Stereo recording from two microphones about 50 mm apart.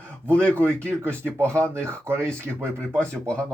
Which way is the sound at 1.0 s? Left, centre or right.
Right.